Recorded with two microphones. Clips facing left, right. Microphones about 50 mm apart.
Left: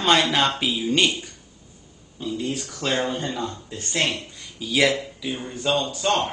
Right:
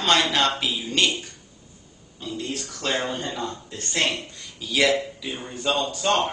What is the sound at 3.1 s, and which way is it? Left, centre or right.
A man's voice, centre.